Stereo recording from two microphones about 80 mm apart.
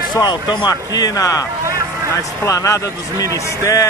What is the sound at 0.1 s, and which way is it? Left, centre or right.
Speech, left.